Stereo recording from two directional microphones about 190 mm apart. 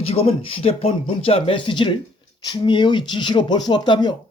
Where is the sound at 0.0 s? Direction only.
30° left (ahead or behind).